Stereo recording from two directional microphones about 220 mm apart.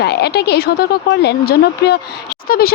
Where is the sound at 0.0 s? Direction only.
50° left (ahead or behind).